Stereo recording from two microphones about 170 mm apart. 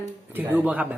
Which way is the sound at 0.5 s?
10° right (ahead or behind).